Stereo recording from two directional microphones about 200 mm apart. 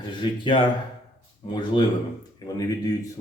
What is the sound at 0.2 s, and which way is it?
Speech, 25° left (ahead or behind).